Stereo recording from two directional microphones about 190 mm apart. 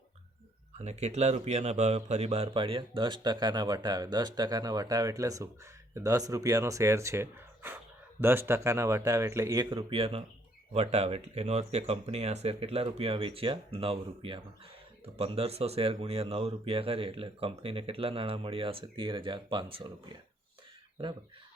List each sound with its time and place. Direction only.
0.8 s speech: 35° right (ahead or behind)
21.0 s speech: 30° right (ahead or behind)